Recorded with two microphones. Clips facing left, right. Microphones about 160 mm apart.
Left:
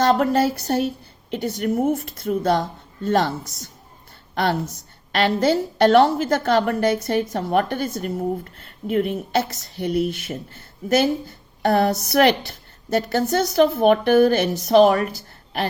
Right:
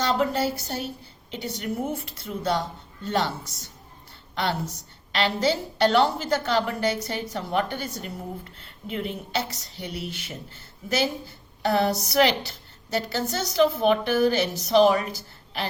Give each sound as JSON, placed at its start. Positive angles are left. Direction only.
{"t": 0.0, "sound": "speech", "side_deg": 50}
{"t": 5.1, "sound": "speech", "side_deg": 50}